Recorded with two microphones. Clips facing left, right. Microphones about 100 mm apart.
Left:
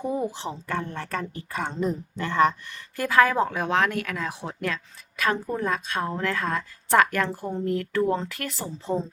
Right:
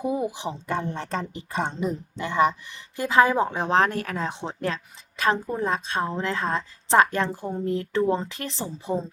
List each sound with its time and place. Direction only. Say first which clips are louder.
0.0 s a woman's voice: right 1 dB; 10° right (ahead or behind); by 8.7 s 25° right (ahead or behind)